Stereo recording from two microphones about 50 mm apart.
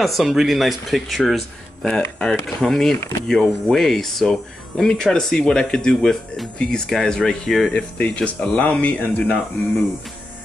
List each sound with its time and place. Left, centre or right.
0.0 s speech: centre
1.9 s speech: centre
7.7 s speech: left